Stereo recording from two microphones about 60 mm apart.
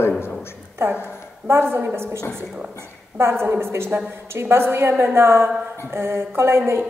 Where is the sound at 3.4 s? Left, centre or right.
Right.